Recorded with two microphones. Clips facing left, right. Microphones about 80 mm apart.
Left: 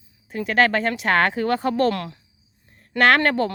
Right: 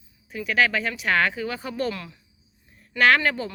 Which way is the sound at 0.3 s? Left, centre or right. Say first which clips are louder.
Left 4 dB; left.